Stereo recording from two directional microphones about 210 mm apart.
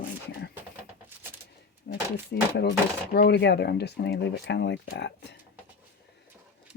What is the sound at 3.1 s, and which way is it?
Speech, 50° left (ahead or behind).